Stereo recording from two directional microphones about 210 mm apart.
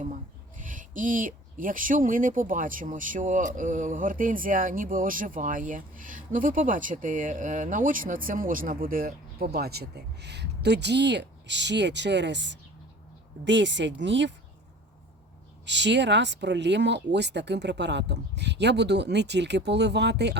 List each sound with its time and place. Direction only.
0.5 s speech: 40° right (ahead or behind); by 14.3 s 60° right (ahead or behind)
15.6 s speech: 55° right (ahead or behind)